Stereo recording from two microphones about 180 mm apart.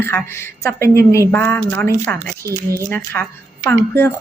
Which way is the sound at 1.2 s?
15° left (ahead or behind).